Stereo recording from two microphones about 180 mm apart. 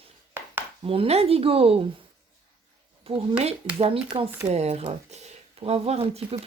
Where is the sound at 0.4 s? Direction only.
10° right (ahead or behind).